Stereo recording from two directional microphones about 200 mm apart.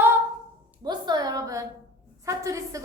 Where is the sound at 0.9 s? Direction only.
20° right (ahead or behind).